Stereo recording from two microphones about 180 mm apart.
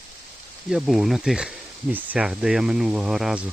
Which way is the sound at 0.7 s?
Centre (ahead or behind).